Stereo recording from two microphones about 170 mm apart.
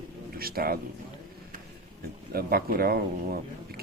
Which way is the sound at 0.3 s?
60° right (ahead or behind).